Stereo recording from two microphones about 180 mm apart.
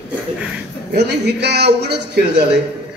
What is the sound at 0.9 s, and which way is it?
A man's voice, 70° right (ahead or behind).